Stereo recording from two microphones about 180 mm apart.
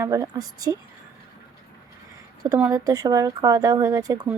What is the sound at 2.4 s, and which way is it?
Speech, 15° right (ahead or behind).